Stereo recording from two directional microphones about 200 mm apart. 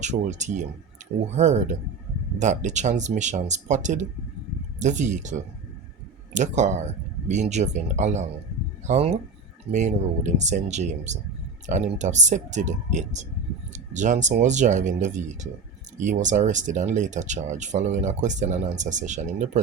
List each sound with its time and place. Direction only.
0.0 s speech: 35° right (ahead or behind)